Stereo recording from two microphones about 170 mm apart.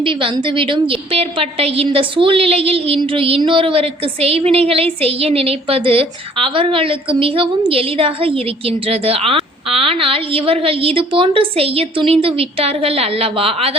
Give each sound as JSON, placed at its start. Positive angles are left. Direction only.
{"t": 0.0, "sound": "a woman's voice", "side_deg": -30}